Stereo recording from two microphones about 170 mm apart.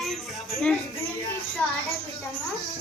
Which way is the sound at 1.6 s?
10° left (ahead or behind).